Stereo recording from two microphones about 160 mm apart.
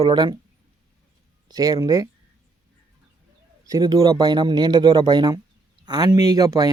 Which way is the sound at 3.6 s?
25° right (ahead or behind).